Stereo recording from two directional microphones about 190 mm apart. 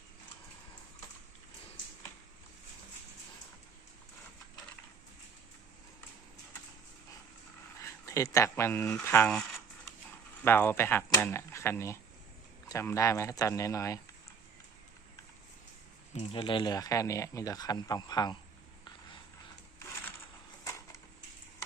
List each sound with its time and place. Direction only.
7.8 s speech: 15° left (ahead or behind)
16.1 s speech: 30° left (ahead or behind)
20.7 s a sound: 15° left (ahead or behind)